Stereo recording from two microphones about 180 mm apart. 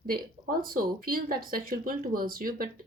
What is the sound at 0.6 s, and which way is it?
Speech, 55° right (ahead or behind).